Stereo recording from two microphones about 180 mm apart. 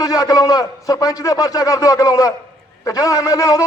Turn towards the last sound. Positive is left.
turn(degrees=20)  # may be behind; listen again after turning